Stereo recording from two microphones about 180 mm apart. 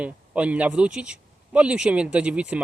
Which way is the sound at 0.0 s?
5° right (ahead or behind).